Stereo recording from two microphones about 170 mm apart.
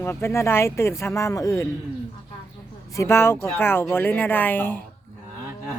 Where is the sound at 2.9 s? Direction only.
15° left (ahead or behind).